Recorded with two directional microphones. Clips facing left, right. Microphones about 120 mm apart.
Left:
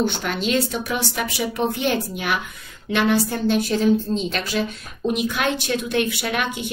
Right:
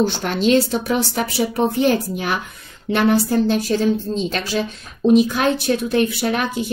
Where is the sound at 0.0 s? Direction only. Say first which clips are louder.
Right 5 dB; 35° right (ahead or behind).